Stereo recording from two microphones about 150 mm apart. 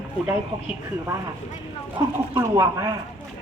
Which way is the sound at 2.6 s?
25° right (ahead or behind).